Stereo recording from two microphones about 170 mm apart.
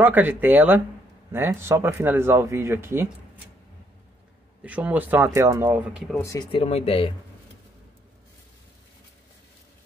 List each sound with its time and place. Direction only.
0.0 s speech: 10° right (ahead or behind)
4.6 s speech: 10° right (ahead or behind)
6.1 s speech: 20° left (ahead or behind)
6.5 s speech: 35° left (ahead or behind)